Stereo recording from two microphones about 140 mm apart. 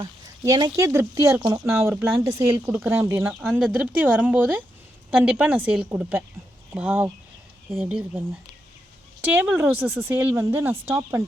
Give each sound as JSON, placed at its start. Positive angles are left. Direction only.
{"t": 0.4, "sound": "speech", "side_deg": -20}